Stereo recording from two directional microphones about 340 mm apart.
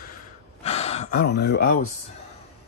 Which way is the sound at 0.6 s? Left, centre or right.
Centre.